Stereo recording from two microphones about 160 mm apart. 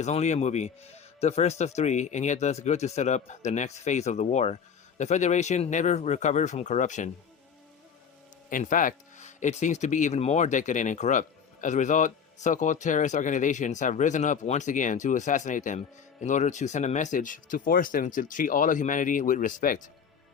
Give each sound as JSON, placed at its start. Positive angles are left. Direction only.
{"t": 0.0, "sound": "speech", "side_deg": 45}
{"t": 8.4, "sound": "speech", "side_deg": 55}